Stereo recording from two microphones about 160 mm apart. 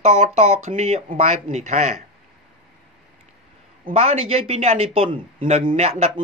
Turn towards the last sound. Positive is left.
turn(degrees=-40)  # may be behind; listen again after turning